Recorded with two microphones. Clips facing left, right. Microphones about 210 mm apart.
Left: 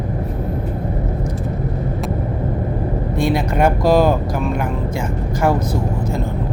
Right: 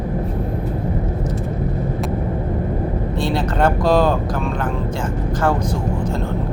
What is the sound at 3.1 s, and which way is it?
Vehicle, 10° left (ahead or behind).